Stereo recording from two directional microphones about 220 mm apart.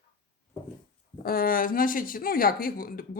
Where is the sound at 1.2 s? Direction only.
40° left (ahead or behind).